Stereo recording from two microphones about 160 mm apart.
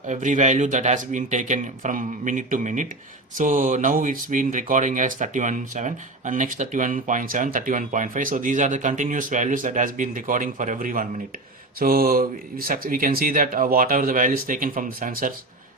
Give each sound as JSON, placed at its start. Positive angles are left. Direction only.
{"t": 0.1, "sound": "speech", "side_deg": -50}